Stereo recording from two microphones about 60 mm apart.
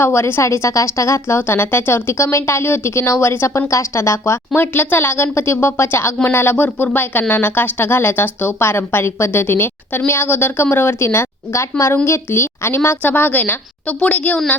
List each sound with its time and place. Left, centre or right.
0.0 s a woman's voice: left
4.5 s a woman's voice: left